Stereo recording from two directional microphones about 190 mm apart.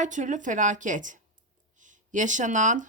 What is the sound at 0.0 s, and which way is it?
A woman's voice, 40° right (ahead or behind).